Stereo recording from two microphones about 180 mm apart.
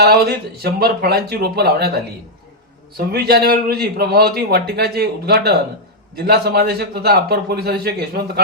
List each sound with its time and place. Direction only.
0.0 s a man's voice: 60° right (ahead or behind)
3.0 s a man's voice: 60° right (ahead or behind)